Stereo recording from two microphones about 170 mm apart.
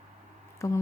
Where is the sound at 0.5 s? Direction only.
15° left (ahead or behind).